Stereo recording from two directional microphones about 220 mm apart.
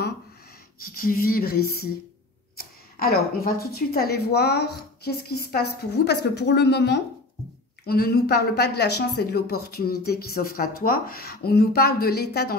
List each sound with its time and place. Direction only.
0.9 s speech: 40° left (ahead or behind)